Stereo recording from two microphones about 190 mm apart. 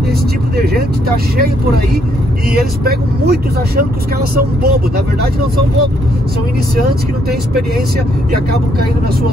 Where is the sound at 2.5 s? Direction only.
55° right (ahead or behind).